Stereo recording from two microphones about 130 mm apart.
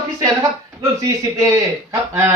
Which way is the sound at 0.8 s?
25° right (ahead or behind).